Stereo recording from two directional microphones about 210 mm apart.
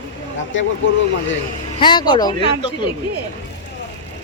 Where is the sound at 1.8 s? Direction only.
20° left (ahead or behind).